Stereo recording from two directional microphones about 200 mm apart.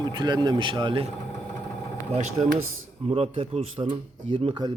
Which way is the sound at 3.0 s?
30° right (ahead or behind).